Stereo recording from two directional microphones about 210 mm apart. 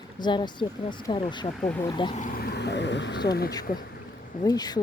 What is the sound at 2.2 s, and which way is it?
Speech, 40° left (ahead or behind).